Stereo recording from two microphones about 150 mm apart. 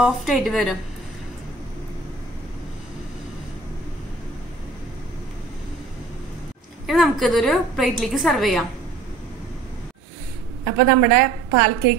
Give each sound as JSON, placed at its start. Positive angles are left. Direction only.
{"t": 0.0, "sound": "a woman's voice", "side_deg": -5}
{"t": 6.9, "sound": "a woman's voice", "side_deg": 0}
{"t": 10.6, "sound": "a woman's voice", "side_deg": -90}